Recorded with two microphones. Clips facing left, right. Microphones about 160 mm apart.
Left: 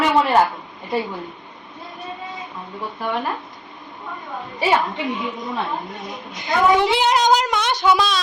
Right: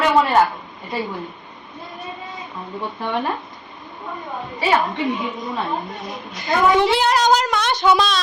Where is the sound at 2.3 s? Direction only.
Centre (ahead or behind).